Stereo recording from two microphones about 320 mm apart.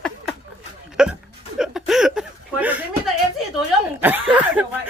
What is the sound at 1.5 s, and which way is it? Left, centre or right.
Chuckle, centre.